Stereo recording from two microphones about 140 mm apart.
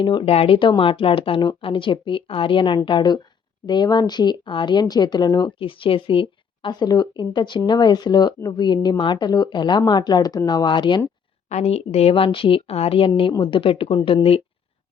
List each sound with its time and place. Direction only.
0.0 s a woman's voice: 35° left (ahead or behind)
11.4 s a woman's voice: 50° left (ahead or behind)